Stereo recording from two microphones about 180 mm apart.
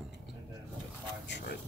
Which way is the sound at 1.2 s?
75° left (ahead or behind).